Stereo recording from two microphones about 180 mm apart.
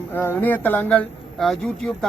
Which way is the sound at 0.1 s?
10° left (ahead or behind).